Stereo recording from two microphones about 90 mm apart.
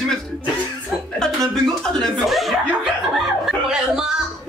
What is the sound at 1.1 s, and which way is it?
Speech, 5° left (ahead or behind).